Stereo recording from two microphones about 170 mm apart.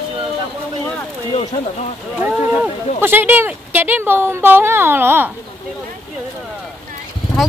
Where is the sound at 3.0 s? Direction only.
10° right (ahead or behind).